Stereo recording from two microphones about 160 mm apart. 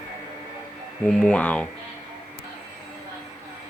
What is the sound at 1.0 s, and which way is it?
Speech, 5° left (ahead or behind).